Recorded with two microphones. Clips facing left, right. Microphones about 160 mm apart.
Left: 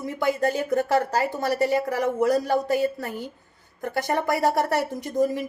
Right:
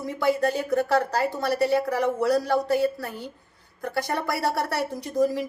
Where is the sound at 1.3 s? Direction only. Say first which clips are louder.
Right 1 dB; 15° left (ahead or behind).